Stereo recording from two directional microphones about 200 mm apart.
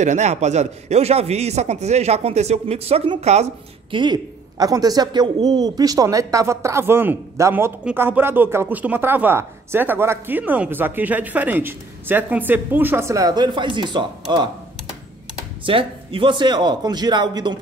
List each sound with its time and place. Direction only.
0.0 s speech: 35° right (ahead or behind)
3.9 s speech: 20° right (ahead or behind)
15.6 s speech: 25° right (ahead or behind)